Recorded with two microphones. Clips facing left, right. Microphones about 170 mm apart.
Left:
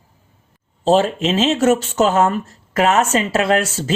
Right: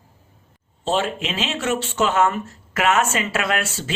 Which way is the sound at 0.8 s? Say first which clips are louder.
Left 8 dB; 40° left (ahead or behind).